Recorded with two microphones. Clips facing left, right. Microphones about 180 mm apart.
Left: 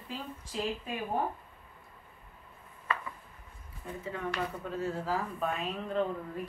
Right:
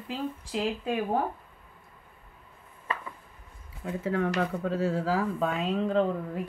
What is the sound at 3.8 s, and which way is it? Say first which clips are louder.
Speech: right 9 dB; 90° right.